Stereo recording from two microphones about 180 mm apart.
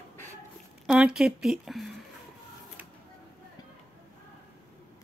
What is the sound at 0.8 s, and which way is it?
Speech, 5° right (ahead or behind).